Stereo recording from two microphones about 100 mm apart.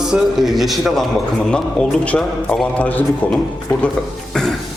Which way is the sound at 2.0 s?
15° left (ahead or behind).